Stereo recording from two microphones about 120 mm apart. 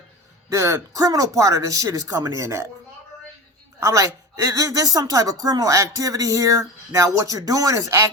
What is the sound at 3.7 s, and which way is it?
A woman's voice, 25° right (ahead or behind).